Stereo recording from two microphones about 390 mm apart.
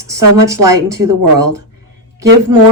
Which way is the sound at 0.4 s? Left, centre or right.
Centre.